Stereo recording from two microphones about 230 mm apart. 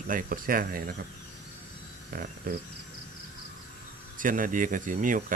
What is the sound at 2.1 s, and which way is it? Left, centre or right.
Cricket, right.